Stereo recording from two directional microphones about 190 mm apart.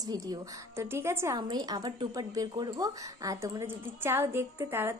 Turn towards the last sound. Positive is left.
turn(degrees=-15)  # may be behind; listen again after turning